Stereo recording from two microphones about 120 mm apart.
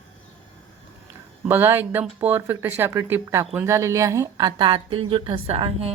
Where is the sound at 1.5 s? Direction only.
20° right (ahead or behind).